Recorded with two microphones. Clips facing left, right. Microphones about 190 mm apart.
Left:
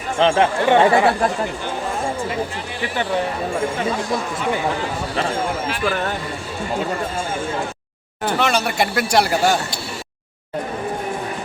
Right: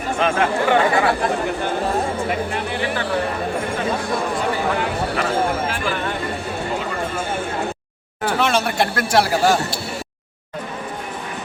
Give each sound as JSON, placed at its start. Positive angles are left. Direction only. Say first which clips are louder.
{"t": 0.2, "sound": "speech", "louder": "left 3 dB", "side_deg": 25}
{"t": 8.4, "sound": "a man's voice", "louder": "even", "side_deg": 0}